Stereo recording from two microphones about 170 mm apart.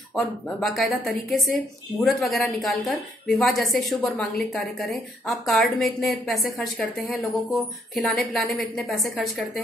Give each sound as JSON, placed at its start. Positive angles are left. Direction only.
{"t": 0.1, "sound": "a woman's voice", "side_deg": 0}